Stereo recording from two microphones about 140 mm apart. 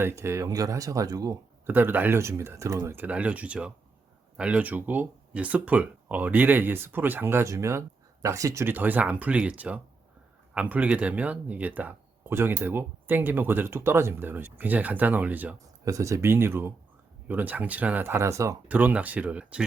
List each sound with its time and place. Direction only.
0.0 s speech: 20° right (ahead or behind)
1.6 s speech: 15° right (ahead or behind)
15.5 s speech: 25° right (ahead or behind)